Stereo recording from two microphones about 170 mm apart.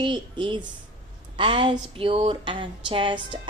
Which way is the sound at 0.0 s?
30° right (ahead or behind).